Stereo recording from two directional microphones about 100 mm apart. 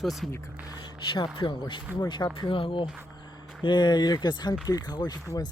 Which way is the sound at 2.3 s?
60° left (ahead or behind).